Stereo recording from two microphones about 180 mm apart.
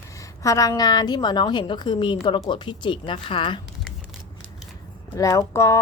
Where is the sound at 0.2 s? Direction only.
20° left (ahead or behind).